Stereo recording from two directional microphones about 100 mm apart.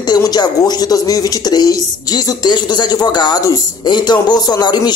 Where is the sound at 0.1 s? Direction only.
45° left (ahead or behind).